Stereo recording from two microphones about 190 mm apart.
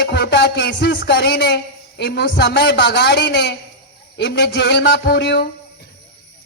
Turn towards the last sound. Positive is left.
turn(degrees=65)  # may be behind; listen again after turning